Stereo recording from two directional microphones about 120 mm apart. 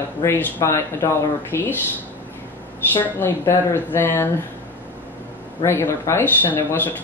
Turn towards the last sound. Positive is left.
turn(degrees=15)  # may be behind; listen again after turning